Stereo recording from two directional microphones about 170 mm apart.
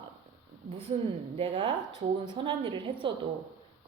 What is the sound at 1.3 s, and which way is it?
A woman's voice, 35° right (ahead or behind).